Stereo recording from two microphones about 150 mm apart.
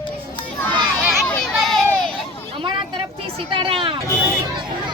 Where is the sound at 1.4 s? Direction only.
Centre (ahead or behind).